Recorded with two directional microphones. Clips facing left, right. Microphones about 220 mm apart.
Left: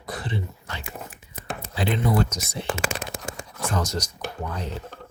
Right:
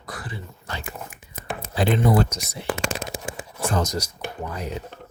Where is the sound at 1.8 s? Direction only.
45° right (ahead or behind).